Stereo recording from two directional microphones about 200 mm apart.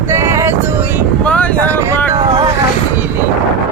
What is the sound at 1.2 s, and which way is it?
Speech, 5° left (ahead or behind).